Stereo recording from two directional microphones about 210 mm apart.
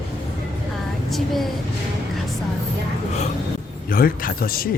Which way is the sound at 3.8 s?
45° left (ahead or behind).